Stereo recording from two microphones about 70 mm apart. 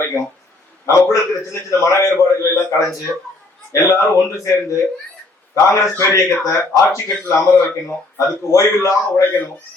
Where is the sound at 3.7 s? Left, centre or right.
Left.